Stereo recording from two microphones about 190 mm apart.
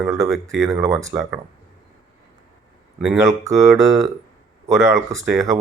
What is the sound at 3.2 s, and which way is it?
Speech, 15° right (ahead or behind).